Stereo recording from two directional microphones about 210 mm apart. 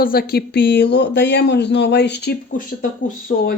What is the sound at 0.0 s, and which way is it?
Speech, 45° left (ahead or behind).